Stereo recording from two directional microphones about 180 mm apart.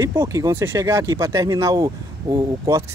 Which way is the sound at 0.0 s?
15° right (ahead or behind).